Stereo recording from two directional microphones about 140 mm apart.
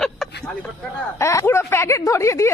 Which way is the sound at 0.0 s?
5° left (ahead or behind).